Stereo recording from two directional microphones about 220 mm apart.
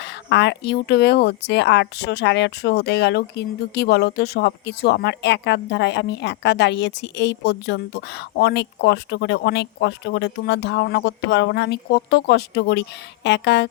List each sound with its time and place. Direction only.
0.0 s speech: 50° left (ahead or behind)